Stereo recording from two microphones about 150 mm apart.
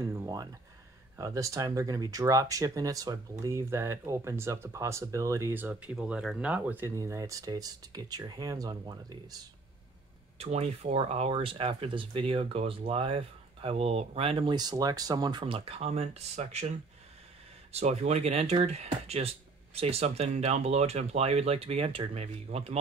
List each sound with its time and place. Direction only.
0.0 s a sound: 20° right (ahead or behind)
1.1 s speech: 20° right (ahead or behind)
10.4 s speech: 45° right (ahead or behind)
17.7 s speech: 45° right (ahead or behind)